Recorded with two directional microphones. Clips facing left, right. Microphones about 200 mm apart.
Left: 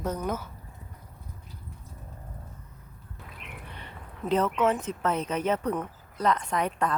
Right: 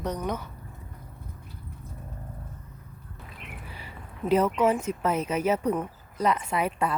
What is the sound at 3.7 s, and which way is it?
Speech, 5° right (ahead or behind).